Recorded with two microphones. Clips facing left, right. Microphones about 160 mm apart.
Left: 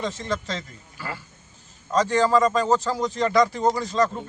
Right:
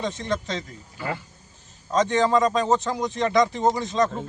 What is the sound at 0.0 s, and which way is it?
Speech, 20° right (ahead or behind).